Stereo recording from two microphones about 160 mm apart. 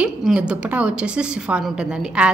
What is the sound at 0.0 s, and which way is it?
A woman's voice, 5° right (ahead or behind).